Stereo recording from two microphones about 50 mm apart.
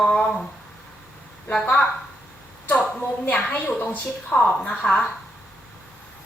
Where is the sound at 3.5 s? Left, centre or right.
Left.